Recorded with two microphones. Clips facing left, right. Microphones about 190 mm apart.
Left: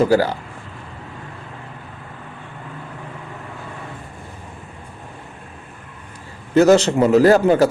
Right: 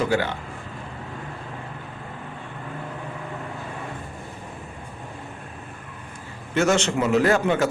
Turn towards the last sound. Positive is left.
turn(degrees=35)  # may be behind; listen again after turning